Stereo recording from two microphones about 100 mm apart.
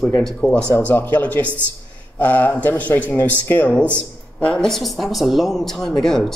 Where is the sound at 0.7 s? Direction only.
20° left (ahead or behind).